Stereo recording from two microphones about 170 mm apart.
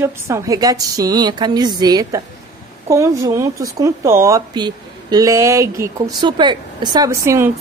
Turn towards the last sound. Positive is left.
turn(degrees=-15)  # may be behind; listen again after turning